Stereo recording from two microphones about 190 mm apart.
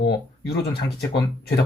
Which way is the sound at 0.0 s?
55° left (ahead or behind).